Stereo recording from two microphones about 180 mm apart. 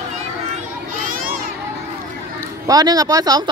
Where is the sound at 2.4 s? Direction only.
20° right (ahead or behind).